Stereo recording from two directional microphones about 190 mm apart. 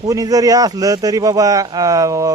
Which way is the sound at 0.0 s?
20° right (ahead or behind).